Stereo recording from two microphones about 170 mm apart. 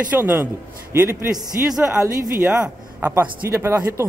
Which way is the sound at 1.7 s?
5° right (ahead or behind).